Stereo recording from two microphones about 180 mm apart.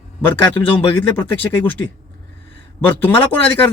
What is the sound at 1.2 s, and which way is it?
Speech, 10° left (ahead or behind).